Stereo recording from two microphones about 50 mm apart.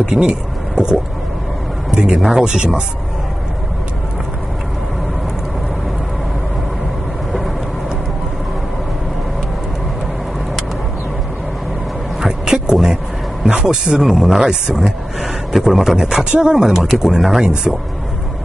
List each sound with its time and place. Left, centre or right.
0.0 s speech: centre
2.1 s speech: centre
2.4 s speech: centre
12.2 s a sound: centre
13.5 s speech: centre